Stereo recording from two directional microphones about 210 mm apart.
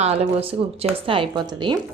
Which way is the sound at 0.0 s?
30° right (ahead or behind).